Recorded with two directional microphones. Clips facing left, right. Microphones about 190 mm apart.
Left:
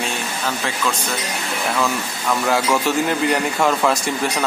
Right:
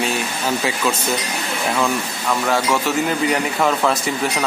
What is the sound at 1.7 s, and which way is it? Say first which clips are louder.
Speech: right 2 dB; centre (ahead or behind).